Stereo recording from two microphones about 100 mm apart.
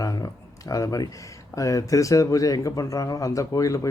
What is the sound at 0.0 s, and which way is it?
A man's voice, 35° left (ahead or behind).